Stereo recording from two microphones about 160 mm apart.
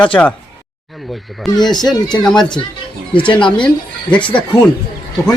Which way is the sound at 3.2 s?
30° left (ahead or behind).